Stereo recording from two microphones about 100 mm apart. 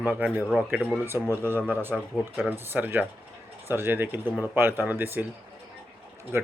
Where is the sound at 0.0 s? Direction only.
15° right (ahead or behind).